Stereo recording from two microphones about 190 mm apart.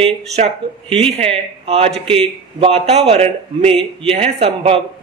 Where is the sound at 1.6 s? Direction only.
30° right (ahead or behind).